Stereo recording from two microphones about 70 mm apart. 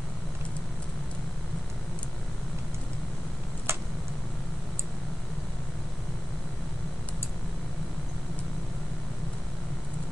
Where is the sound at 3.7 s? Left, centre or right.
Right.